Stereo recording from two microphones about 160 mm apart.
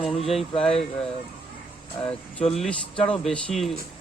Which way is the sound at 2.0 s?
40° left (ahead or behind).